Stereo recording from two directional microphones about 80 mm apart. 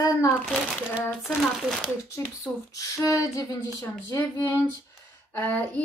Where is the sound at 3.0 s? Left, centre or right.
Left.